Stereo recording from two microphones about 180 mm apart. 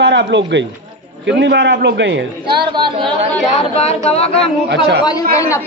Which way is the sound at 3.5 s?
35° left (ahead or behind).